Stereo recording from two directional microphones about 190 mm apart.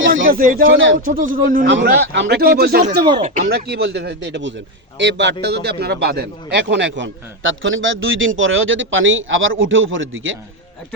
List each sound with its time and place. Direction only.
0.1 s speech: 50° right (ahead or behind)
0.6 s a man's voice: 90° right
0.9 s a man's voice: 45° right (ahead or behind)
1.6 s speech: 70° right (ahead or behind); by 2.8 s 55° right (ahead or behind)
3.2 s a man's voice: 40° right (ahead or behind); by 10.3 s 90° right